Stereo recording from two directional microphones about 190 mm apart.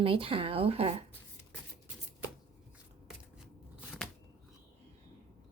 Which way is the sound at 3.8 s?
5° right (ahead or behind).